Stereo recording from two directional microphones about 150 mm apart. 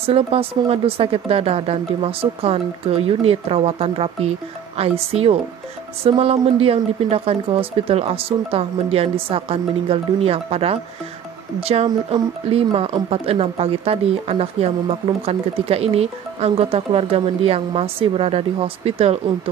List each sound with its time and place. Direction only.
0.0 s speech: 40° right (ahead or behind)